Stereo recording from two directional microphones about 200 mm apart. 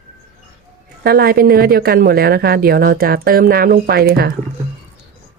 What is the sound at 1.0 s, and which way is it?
A woman's voice, 50° right (ahead or behind).